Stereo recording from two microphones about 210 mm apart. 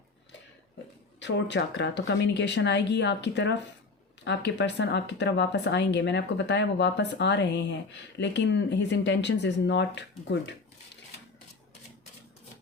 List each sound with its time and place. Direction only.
1.2 s speech: 55° left (ahead or behind)